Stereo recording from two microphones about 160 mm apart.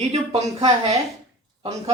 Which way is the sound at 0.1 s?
40° right (ahead or behind).